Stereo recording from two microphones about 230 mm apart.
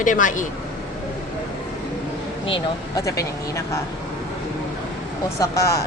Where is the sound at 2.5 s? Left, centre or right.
Centre.